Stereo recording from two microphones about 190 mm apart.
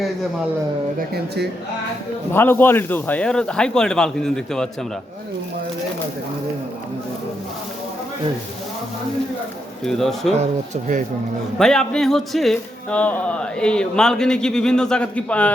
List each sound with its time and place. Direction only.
2.3 s speech: 10° left (ahead or behind)
9.8 s speech: centre (ahead or behind)
10.4 s speech: 40° right (ahead or behind)
11.6 s speech: 5° left (ahead or behind)